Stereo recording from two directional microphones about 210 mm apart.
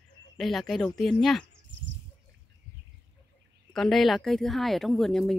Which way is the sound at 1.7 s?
60° right (ahead or behind).